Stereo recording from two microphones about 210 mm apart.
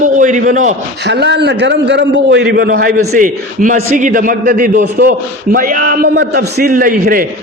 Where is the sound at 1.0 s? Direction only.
55° right (ahead or behind).